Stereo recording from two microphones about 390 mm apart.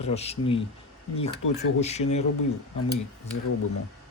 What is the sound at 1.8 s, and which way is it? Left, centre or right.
Speech, centre.